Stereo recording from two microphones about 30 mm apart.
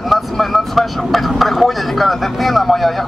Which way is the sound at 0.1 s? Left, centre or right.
Centre.